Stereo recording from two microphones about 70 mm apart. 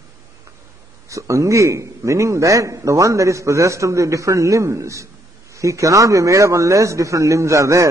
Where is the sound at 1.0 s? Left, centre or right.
Right.